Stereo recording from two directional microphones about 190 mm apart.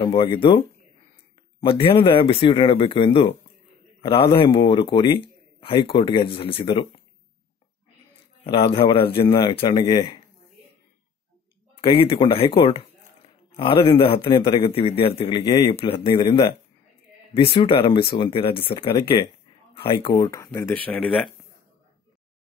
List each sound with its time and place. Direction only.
0.0 s a man's voice: 30° left (ahead or behind)
8.6 s a man's voice: 30° left (ahead or behind)
11.8 s a man's voice: 30° left (ahead or behind); by 21.3 s 5° left (ahead or behind)